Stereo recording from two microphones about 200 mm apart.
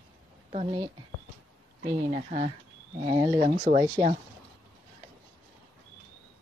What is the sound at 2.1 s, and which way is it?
Speech, 35° right (ahead or behind).